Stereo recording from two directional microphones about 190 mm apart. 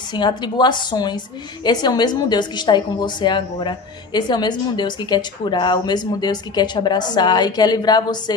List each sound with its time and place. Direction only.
0.1 s a woman's voice: 25° left (ahead or behind)